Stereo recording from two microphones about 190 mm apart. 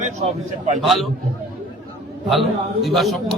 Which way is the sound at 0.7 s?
Centre (ahead or behind).